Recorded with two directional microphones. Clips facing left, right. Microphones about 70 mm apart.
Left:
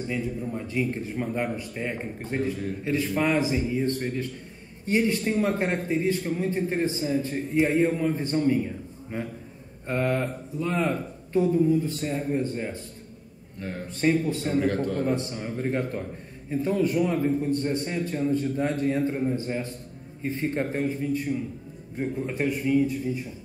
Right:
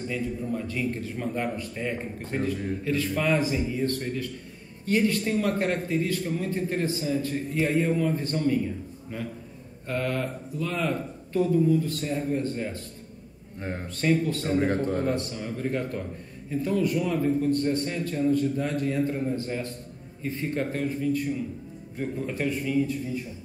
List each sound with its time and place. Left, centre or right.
0.1 s speech: centre
13.6 s speech: right
13.8 s speech: centre
20.2 s speech: left